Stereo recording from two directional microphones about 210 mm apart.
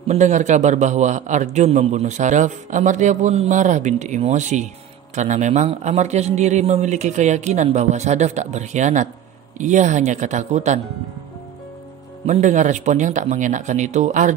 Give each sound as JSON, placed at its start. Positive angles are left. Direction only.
{"t": 0.1, "sound": "a man's voice", "side_deg": -35}
{"t": 12.3, "sound": "a man's voice", "side_deg": -35}